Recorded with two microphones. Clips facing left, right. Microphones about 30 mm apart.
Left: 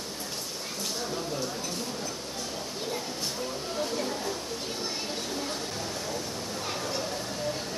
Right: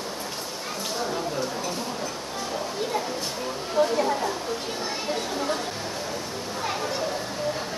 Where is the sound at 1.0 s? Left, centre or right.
Centre.